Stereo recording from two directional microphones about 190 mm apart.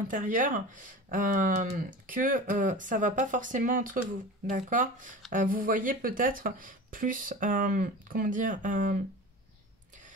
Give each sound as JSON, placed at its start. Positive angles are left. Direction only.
{"t": 0.1, "sound": "speech", "side_deg": -45}